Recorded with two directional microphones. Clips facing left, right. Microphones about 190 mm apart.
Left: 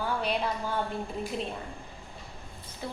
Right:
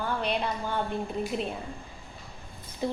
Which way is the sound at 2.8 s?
15° right (ahead or behind).